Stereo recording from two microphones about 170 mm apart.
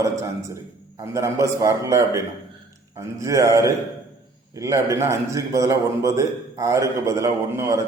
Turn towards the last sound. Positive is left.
turn(degrees=-15)  # may be behind; listen again after turning